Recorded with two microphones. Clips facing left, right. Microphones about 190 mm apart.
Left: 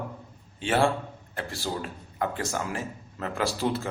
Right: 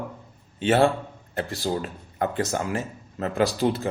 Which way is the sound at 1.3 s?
20° right (ahead or behind).